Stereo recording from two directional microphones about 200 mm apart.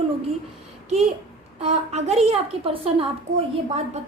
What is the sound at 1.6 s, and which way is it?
A woman's voice, 35° right (ahead or behind).